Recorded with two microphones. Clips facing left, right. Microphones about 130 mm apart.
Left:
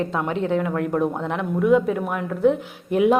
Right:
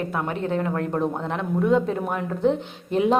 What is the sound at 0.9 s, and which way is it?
Speech, 15° right (ahead or behind).